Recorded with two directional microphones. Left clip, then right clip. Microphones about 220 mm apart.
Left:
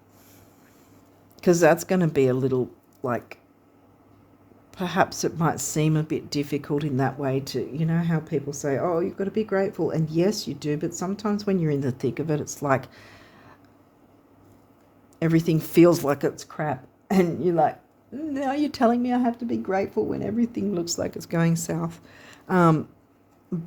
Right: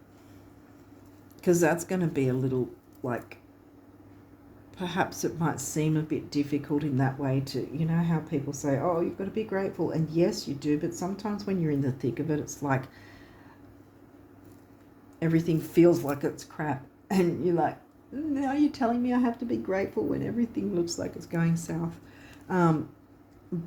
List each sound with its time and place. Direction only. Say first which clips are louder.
1.4 s speech: left 6 dB; 50° left (ahead or behind)
4.7 s speech: left 7 dB; 45° left (ahead or behind)
15.2 s speech: left 4 dB; 50° left (ahead or behind)